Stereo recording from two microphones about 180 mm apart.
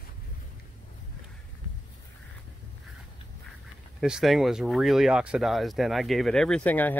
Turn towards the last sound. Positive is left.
turn(degrees=10)  # may be behind; listen again after turning